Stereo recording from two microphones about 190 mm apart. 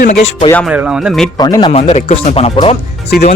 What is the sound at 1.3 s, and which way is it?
Speech, 20° left (ahead or behind).